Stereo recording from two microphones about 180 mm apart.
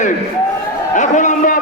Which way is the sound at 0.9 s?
45° left (ahead or behind).